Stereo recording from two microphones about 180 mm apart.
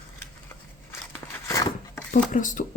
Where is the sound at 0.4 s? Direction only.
15° left (ahead or behind).